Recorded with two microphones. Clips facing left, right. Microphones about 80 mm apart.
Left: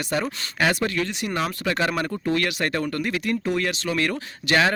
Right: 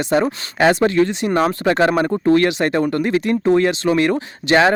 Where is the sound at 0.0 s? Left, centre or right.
Right.